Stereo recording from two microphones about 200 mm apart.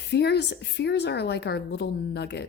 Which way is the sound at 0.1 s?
55° left (ahead or behind).